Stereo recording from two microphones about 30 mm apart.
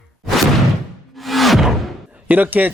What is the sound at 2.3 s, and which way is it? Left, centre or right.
Speech, right.